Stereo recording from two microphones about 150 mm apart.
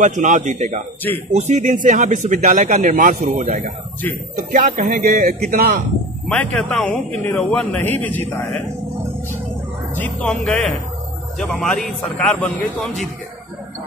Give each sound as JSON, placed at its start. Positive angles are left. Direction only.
{"t": 0.0, "sound": "a man's voice", "side_deg": -55}
{"t": 6.2, "sound": "speech", "side_deg": 10}
{"t": 9.9, "sound": "a man's voice", "side_deg": 10}